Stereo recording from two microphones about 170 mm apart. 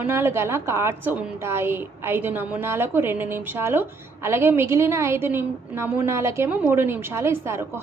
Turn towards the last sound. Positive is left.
turn(degrees=-15)  # may be behind; listen again after turning